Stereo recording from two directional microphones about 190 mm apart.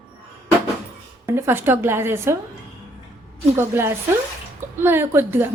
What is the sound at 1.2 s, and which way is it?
A woman's voice, 15° right (ahead or behind).